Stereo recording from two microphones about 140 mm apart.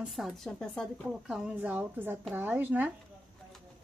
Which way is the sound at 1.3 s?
10° right (ahead or behind).